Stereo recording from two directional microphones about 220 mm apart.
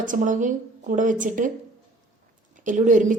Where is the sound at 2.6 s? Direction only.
35° right (ahead or behind).